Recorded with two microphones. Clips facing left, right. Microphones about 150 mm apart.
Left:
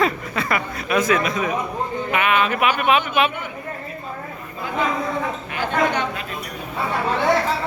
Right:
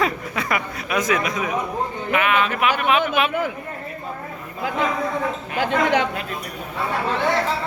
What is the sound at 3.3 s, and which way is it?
Speech, 90° right.